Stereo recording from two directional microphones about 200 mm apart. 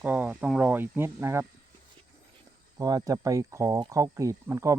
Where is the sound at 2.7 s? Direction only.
20° right (ahead or behind).